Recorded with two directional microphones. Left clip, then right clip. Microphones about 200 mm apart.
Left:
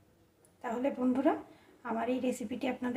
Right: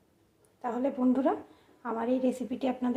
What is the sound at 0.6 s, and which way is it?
A woman's voice, 15° right (ahead or behind).